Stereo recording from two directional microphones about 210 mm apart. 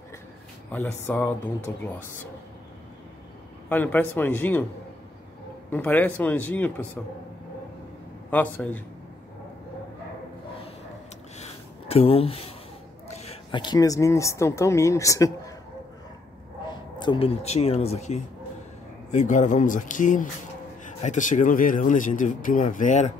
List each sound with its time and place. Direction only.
0.7 s speech: 10° left (ahead or behind)
3.6 s speech: 10° left (ahead or behind)
5.7 s speech: 10° left (ahead or behind)
8.5 s speech: 10° left (ahead or behind)
11.3 s a sound: 30° left (ahead or behind)
13.1 s speech: 30° left (ahead or behind)
17.0 s speech: 25° left (ahead or behind)